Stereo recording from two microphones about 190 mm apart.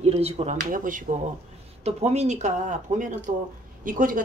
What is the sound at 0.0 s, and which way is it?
Speech, 35° right (ahead or behind).